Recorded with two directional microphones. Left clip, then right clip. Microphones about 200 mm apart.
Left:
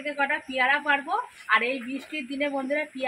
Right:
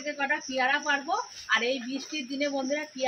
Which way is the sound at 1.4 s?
5° left (ahead or behind).